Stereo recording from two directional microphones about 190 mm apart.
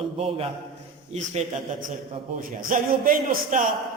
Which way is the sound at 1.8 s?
45° right (ahead or behind).